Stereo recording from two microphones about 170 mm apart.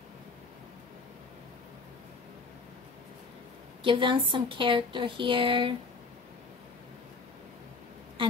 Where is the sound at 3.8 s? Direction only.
30° right (ahead or behind).